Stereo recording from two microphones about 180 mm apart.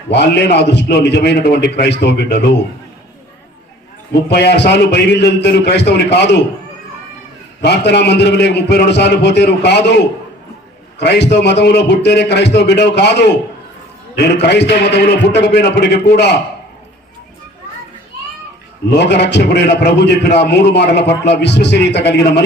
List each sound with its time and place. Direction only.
0.1 s a man's voice: 70° left (ahead or behind)
4.3 s a man's voice: 70° left (ahead or behind)
7.6 s a man's voice: 70° left (ahead or behind)
10.9 s a sound: 70° left (ahead or behind)
11.4 s a man's voice: 70° left (ahead or behind)
18.9 s a man's voice: 70° left (ahead or behind)